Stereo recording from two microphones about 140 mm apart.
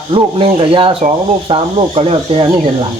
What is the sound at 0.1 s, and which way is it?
Speech, 40° right (ahead or behind).